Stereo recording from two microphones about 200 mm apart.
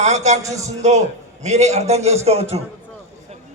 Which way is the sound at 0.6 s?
35° right (ahead or behind).